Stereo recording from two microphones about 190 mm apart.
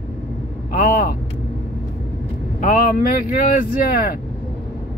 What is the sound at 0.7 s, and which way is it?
Speech, 45° left (ahead or behind).